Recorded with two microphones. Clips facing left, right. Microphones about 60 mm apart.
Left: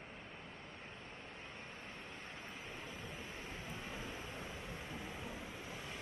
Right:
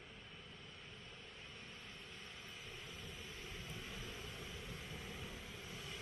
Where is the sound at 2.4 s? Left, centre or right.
Left.